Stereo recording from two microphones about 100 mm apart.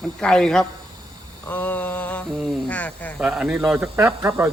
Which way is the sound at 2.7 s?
15° left (ahead or behind).